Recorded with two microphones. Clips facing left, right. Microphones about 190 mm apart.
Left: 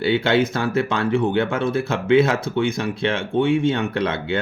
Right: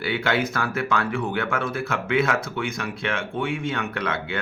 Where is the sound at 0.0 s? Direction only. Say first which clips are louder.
Left 6 dB; 25° left (ahead or behind).